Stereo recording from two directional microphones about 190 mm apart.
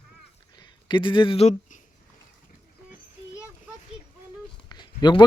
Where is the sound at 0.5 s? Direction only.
25° left (ahead or behind).